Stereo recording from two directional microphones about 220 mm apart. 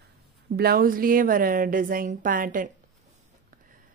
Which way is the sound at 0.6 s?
45° right (ahead or behind).